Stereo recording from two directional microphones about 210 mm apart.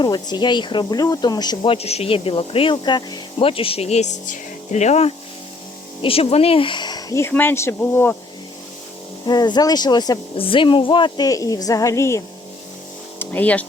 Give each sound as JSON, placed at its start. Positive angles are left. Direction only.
{"t": 0.0, "sound": "speech", "side_deg": 20}
{"t": 9.2, "sound": "speech", "side_deg": 20}